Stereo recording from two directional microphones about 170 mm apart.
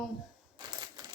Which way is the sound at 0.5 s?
25° right (ahead or behind).